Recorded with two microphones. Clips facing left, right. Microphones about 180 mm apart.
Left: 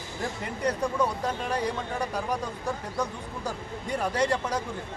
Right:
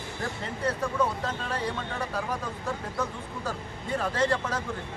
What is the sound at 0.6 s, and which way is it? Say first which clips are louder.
Speech: left 2 dB; 15° left (ahead or behind).